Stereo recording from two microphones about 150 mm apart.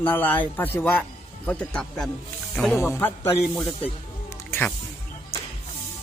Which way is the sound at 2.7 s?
15° left (ahead or behind).